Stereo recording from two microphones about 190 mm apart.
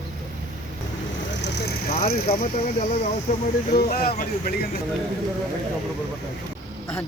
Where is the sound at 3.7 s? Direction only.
55° left (ahead or behind).